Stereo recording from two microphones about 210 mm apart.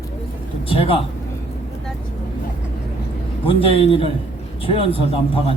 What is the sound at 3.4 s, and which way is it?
Speech, 25° left (ahead or behind).